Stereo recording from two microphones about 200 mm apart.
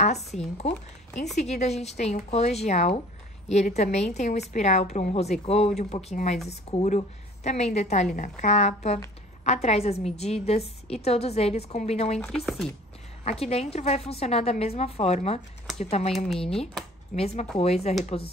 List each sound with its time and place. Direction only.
0.0 s a woman's voice: 35° left (ahead or behind)
12.6 s a woman's voice: 5° left (ahead or behind)
13.2 s a woman's voice: 30° left (ahead or behind)